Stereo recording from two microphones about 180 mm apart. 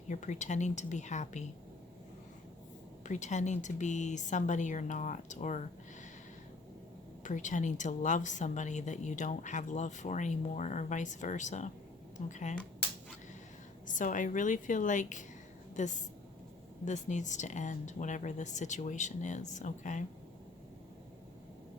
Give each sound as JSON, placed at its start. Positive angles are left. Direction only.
{"t": 0.1, "sound": "speech", "side_deg": 40}
{"t": 3.0, "sound": "a woman's voice", "side_deg": 40}
{"t": 7.3, "sound": "a woman's voice", "side_deg": 45}
{"t": 13.8, "sound": "a woman's voice", "side_deg": 45}